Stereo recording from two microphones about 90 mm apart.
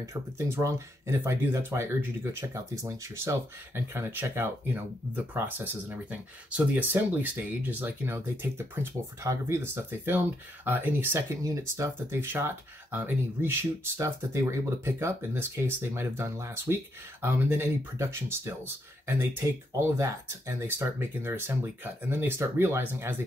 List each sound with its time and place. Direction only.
0.0 s speech: 35° right (ahead or behind)